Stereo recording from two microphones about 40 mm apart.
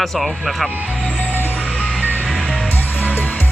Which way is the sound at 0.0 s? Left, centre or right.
Centre.